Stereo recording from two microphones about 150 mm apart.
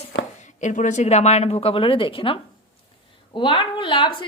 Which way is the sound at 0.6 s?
55° left (ahead or behind).